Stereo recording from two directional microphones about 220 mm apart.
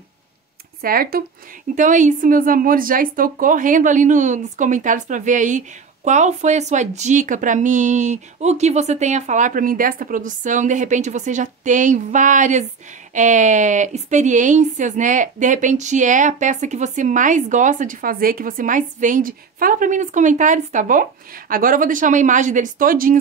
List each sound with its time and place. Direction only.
0.8 s a woman's voice: 40° right (ahead or behind)